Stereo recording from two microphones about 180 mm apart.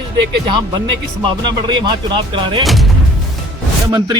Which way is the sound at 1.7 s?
25° right (ahead or behind).